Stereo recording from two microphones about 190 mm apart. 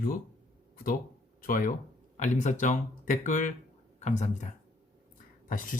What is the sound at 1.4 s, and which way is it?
Speech, 45° left (ahead or behind).